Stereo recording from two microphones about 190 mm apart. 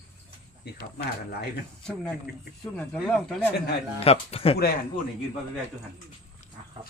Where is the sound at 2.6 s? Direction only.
5° left (ahead or behind).